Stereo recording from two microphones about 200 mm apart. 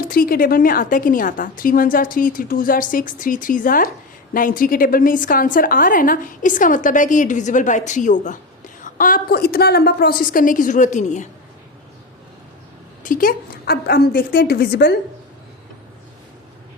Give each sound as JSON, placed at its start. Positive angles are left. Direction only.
{"t": 0.1, "sound": "a woman's voice", "side_deg": 45}
{"t": 13.0, "sound": "a woman's voice", "side_deg": 45}